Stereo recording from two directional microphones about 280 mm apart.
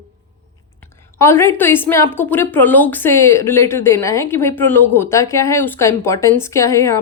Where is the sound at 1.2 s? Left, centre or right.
Centre.